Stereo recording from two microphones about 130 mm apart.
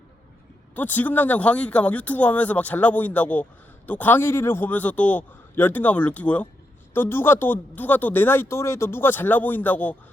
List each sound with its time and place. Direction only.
0.8 s speech: 15° left (ahead or behind)